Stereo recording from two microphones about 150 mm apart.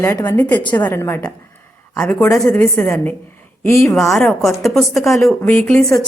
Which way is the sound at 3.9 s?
Centre (ahead or behind).